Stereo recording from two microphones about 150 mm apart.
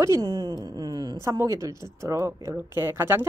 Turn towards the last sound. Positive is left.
turn(degrees=-15)  # may be behind; listen again after turning